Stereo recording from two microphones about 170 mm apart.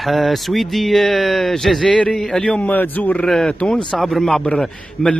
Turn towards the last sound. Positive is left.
turn(degrees=5)  # may be behind; listen again after turning